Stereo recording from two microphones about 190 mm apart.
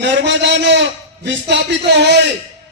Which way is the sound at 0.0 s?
65° right (ahead or behind).